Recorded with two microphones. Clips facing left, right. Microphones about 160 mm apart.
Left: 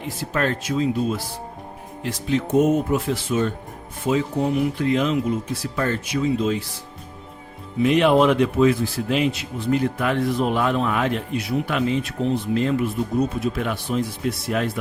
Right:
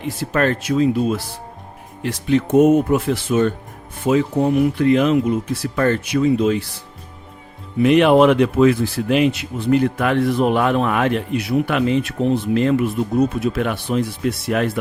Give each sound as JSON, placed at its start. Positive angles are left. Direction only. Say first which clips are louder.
{"t": 0.3, "sound": "speech", "louder": "right 5 dB", "side_deg": -60}
{"t": 7.8, "sound": "speech", "louder": "right 4 dB", "side_deg": -65}